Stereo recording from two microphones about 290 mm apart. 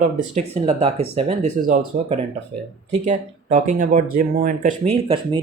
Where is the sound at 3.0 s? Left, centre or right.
Right.